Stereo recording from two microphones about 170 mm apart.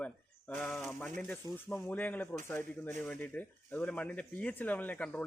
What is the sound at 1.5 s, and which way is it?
Speech, 15° left (ahead or behind).